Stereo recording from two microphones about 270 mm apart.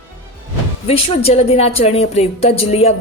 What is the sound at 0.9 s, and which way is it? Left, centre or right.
A woman's voice, left.